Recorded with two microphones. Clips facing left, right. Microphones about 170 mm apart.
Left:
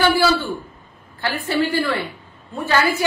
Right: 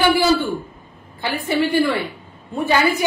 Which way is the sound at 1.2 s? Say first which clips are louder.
Right 1 dB; 15° right (ahead or behind).